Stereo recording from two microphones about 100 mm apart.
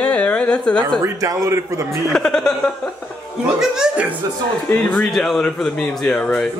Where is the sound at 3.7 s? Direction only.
10° right (ahead or behind).